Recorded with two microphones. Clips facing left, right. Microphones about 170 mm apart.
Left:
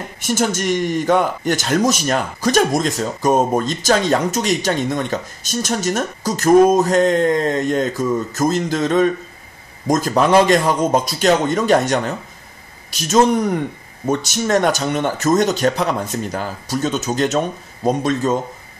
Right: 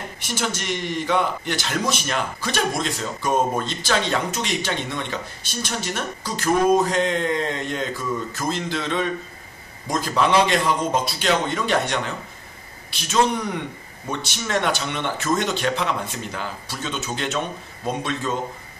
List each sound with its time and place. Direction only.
0.2 s speech: 45° left (ahead or behind)